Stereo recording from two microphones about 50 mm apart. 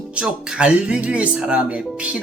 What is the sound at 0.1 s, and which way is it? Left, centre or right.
Speech, right.